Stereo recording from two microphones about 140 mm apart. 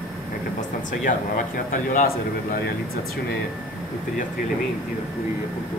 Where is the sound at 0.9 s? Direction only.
70° left (ahead or behind).